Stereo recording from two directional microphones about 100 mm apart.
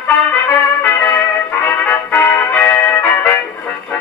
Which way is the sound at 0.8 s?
20° left (ahead or behind).